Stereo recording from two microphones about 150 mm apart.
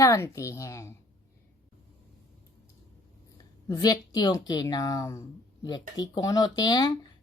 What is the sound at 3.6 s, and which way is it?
Speech, 25° left (ahead or behind).